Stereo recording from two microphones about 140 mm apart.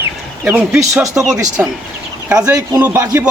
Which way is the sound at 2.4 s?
20° right (ahead or behind).